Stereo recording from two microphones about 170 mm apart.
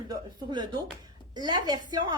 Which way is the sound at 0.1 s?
25° right (ahead or behind).